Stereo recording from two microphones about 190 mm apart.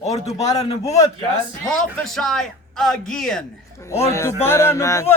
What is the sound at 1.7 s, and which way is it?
Speech, centre (ahead or behind).